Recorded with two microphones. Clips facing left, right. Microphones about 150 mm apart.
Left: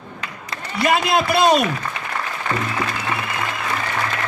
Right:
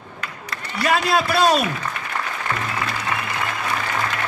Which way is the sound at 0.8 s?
10° left (ahead or behind).